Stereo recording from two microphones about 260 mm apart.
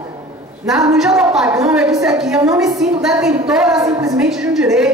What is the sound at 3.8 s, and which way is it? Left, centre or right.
Speech, centre.